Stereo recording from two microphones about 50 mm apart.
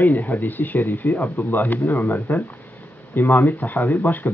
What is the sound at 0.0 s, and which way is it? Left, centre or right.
Speech, left.